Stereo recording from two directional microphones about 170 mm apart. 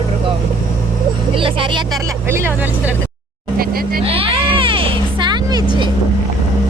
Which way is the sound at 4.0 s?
35° right (ahead or behind).